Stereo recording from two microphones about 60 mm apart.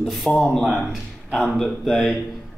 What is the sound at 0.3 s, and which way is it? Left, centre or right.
Speech, centre.